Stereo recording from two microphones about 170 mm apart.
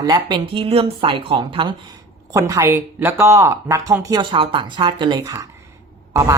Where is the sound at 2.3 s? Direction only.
20° right (ahead or behind).